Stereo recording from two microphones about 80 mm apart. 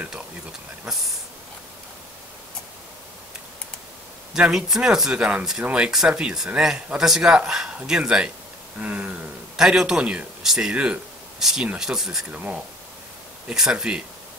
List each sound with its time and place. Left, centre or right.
4.3 s speech: centre
8.7 s a sound: centre
9.6 s speech: centre
12.3 s speech: centre